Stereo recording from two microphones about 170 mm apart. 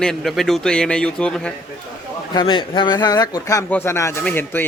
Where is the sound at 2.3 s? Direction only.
25° left (ahead or behind).